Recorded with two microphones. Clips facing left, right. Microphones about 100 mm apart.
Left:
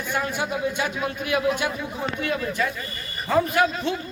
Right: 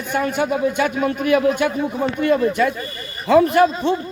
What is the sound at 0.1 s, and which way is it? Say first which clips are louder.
A man's voice: right 7 dB; 55° right (ahead or behind).